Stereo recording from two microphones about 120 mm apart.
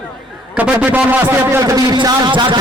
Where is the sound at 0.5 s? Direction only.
10° right (ahead or behind).